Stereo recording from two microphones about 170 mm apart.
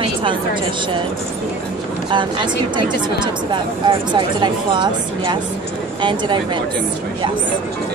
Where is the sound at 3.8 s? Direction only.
25° right (ahead or behind).